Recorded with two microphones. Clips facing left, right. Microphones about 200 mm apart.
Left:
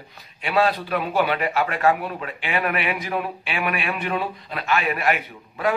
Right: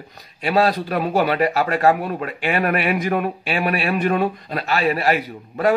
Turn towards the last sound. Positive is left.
turn(degrees=-40)  # may be behind; listen again after turning